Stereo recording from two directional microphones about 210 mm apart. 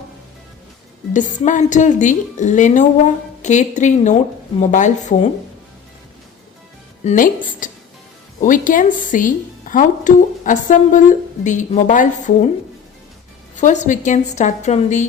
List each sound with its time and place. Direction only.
1.1 s a woman's voice: 35° left (ahead or behind)
7.0 s a woman's voice: 35° left (ahead or behind)
13.6 s a woman's voice: 35° left (ahead or behind)